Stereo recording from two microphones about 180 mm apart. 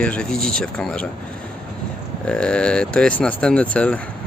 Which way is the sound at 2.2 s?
5° left (ahead or behind).